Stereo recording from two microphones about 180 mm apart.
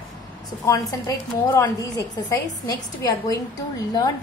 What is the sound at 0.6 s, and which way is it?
A woman's voice, 20° left (ahead or behind).